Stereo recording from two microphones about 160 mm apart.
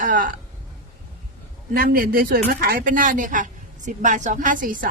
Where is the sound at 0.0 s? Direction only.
60° right (ahead or behind).